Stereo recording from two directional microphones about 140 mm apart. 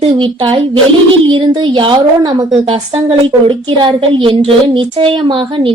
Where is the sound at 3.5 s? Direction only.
35° right (ahead or behind).